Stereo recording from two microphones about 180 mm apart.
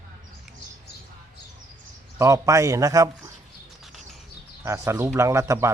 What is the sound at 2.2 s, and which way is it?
Speech, 15° right (ahead or behind).